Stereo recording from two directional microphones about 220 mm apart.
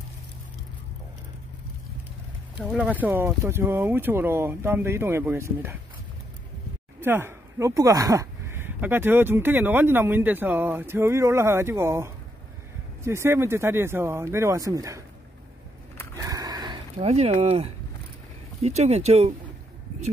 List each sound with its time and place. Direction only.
2.7 s speech: 5° right (ahead or behind)
7.0 s speech: 10° right (ahead or behind)
16.2 s a sound: 15° right (ahead or behind)
18.6 s speech: 30° right (ahead or behind)